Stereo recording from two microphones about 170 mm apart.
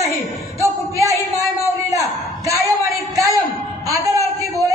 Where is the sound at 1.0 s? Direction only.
20° right (ahead or behind).